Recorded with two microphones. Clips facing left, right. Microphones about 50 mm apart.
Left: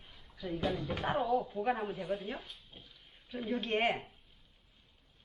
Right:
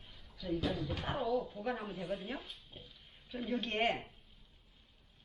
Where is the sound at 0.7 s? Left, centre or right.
Left; by 4.1 s centre.